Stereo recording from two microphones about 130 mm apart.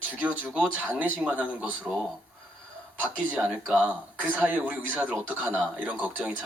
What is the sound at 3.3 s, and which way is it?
Speech, 10° right (ahead or behind).